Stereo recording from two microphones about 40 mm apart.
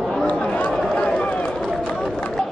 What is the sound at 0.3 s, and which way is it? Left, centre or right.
Chatter, left.